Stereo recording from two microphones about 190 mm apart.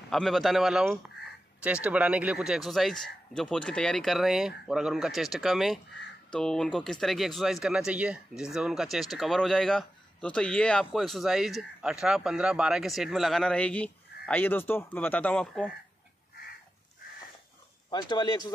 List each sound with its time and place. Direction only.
0.1 s speech: centre (ahead or behind)
17.8 s speech: 20° left (ahead or behind)